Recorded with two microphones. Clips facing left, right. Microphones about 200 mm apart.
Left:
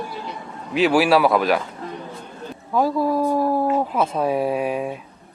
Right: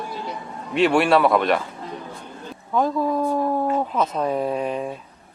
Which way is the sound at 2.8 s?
10° left (ahead or behind).